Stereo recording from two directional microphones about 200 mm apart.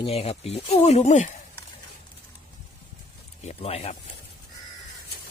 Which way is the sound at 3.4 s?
30° left (ahead or behind).